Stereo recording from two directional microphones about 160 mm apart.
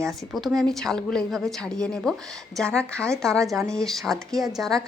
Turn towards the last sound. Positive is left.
turn(degrees=0)  # may be behind; listen again after turning